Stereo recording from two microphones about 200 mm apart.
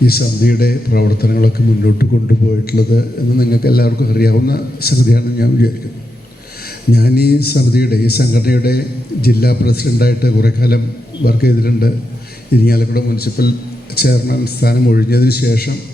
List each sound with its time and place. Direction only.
0.0 s a man's voice: 50° left (ahead or behind)
6.9 s a man's voice: 50° left (ahead or behind)